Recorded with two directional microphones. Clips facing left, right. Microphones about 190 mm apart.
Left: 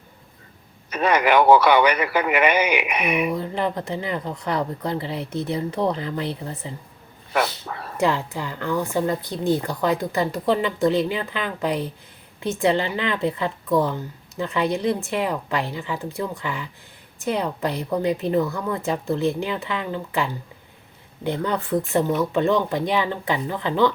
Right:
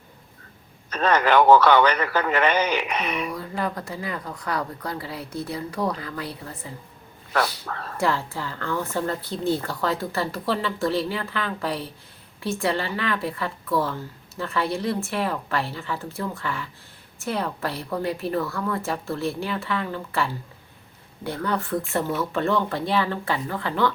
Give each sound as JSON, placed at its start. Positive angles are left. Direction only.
{"t": 0.9, "sound": "a woman's voice", "side_deg": 10}
{"t": 3.3, "sound": "a woman's voice", "side_deg": 25}